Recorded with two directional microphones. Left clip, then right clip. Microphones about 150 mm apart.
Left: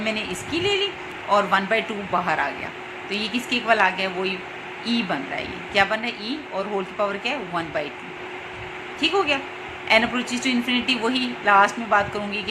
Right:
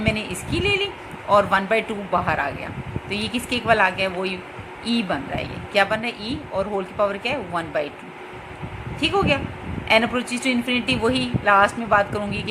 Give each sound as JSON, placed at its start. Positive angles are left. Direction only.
{"t": 0.0, "sound": "a sound", "side_deg": -30}
{"t": 1.3, "sound": "a woman's voice", "side_deg": -30}
{"t": 9.0, "sound": "a woman's voice", "side_deg": -30}